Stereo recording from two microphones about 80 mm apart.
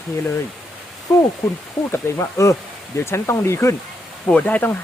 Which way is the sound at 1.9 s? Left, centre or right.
Left.